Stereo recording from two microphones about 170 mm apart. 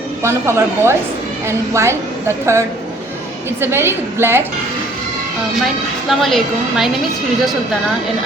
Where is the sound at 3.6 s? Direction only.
15° right (ahead or behind).